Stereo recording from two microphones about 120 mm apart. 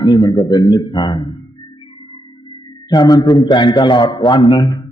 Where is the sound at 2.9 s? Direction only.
30° left (ahead or behind).